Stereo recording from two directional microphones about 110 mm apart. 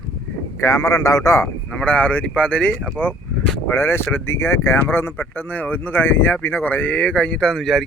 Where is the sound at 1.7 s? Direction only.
10° left (ahead or behind).